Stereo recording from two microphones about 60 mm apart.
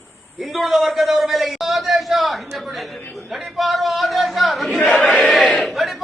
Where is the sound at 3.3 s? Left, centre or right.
Centre.